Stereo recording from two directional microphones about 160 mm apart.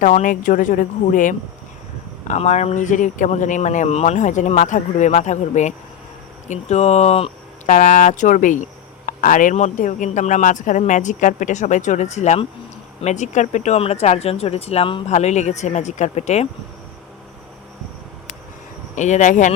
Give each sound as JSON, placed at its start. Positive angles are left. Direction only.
{"t": 0.0, "sound": "speech", "side_deg": 55}
{"t": 7.7, "sound": "speech", "side_deg": 55}
{"t": 18.9, "sound": "speech", "side_deg": 50}